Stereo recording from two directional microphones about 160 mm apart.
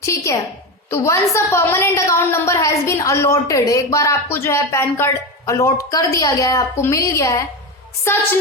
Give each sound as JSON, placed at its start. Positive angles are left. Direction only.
{"t": 0.0, "sound": "a sound", "side_deg": 20}
{"t": 0.9, "sound": "a woman's voice", "side_deg": 15}
{"t": 8.1, "sound": "music", "side_deg": 15}